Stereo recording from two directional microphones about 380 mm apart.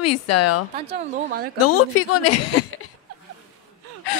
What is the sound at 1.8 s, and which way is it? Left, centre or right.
Speech, left.